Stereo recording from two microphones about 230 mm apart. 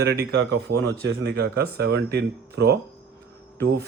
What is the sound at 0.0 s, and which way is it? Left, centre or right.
A man's voice, right.